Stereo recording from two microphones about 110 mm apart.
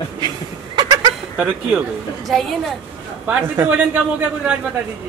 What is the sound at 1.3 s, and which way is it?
Speech, 15° right (ahead or behind).